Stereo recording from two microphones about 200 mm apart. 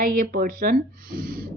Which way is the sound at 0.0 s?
45° right (ahead or behind).